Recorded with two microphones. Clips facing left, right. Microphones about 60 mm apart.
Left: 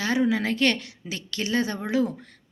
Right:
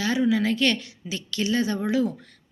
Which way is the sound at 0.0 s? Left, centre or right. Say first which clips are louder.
Right 1 dB; left.